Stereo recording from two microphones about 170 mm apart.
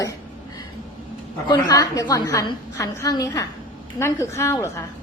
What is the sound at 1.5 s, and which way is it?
A woman's voice, 25° left (ahead or behind).